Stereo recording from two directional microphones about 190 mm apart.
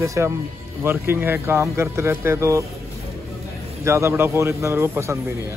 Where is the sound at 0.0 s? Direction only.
15° right (ahead or behind).